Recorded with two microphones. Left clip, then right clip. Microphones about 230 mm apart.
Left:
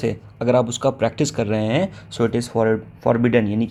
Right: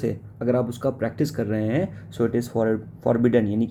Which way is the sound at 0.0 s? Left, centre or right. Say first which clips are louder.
Left 4 dB; centre.